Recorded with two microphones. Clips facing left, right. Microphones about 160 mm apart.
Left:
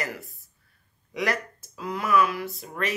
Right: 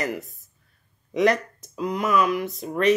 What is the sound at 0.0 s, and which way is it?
Speech, 20° right (ahead or behind).